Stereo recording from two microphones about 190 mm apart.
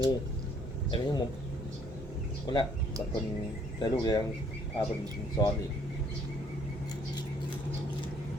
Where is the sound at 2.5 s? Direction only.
20° left (ahead or behind).